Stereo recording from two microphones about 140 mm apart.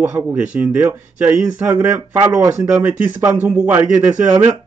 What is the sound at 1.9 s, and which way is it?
Speech, 25° right (ahead or behind).